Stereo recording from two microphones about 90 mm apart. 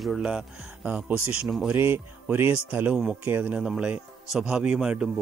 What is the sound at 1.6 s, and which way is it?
Speech, 25° right (ahead or behind).